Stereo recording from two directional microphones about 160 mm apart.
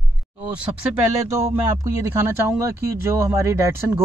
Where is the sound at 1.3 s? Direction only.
20° right (ahead or behind).